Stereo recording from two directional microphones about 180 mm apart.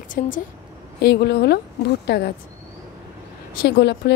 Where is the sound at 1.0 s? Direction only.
65° left (ahead or behind).